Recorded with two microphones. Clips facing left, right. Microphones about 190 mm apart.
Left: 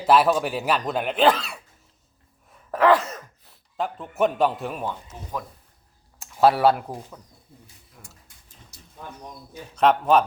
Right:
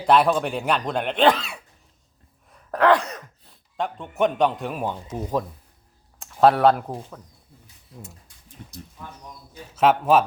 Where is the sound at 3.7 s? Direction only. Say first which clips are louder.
Even; centre (ahead or behind).